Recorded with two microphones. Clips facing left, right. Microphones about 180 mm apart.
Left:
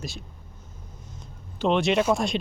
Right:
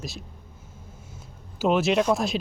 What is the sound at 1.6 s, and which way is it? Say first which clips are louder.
Speech: right 1 dB; 5° right (ahead or behind).